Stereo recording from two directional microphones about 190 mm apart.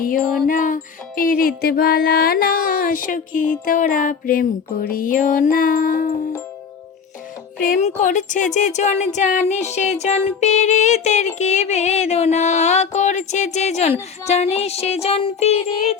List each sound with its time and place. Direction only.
0.4 s music: 45° left (ahead or behind)
7.6 s speech: 40° left (ahead or behind)